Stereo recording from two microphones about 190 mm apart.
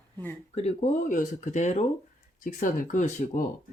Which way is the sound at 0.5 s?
35° left (ahead or behind).